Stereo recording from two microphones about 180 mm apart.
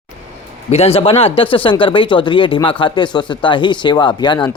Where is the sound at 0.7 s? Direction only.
35° left (ahead or behind).